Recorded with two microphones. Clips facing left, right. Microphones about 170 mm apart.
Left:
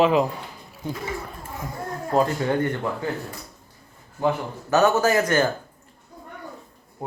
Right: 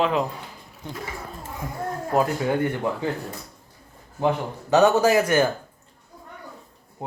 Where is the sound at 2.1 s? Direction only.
5° right (ahead or behind).